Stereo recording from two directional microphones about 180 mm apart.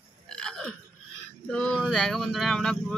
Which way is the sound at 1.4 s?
5° left (ahead or behind).